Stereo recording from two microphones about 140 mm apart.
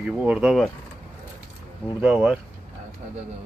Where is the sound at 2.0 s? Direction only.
5° right (ahead or behind).